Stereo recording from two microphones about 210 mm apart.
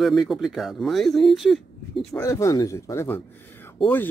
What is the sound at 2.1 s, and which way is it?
Speech, 15° left (ahead or behind).